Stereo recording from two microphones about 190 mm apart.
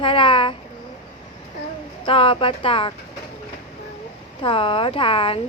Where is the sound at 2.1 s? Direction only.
30° left (ahead or behind).